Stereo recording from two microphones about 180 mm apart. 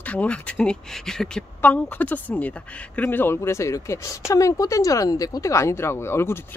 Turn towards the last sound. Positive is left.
turn(degrees=15)  # may be behind; listen again after turning